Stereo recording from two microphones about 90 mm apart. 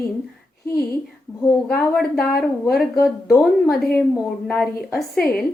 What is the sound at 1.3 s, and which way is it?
Speech, 30° left (ahead or behind).